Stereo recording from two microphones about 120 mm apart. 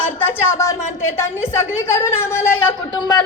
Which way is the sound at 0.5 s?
25° left (ahead or behind).